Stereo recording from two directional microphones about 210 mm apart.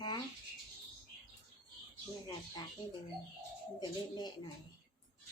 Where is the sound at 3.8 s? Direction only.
20° left (ahead or behind).